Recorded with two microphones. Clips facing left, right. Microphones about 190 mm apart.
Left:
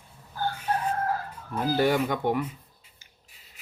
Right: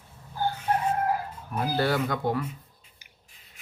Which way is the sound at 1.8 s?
15° left (ahead or behind).